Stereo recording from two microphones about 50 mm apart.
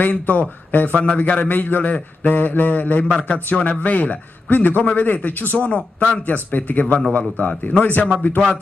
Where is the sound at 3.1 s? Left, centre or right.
Left.